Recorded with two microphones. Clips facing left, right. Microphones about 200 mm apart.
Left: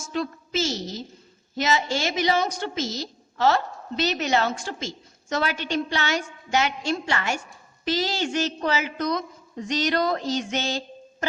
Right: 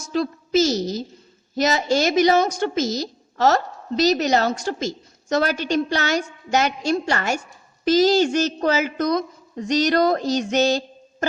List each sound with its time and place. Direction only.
0.0 s a woman's voice: 35° right (ahead or behind)